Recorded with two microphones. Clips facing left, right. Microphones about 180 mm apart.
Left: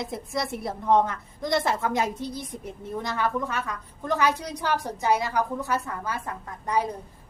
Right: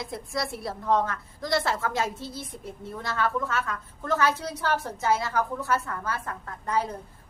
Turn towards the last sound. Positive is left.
turn(degrees=15)  # may be behind; listen again after turning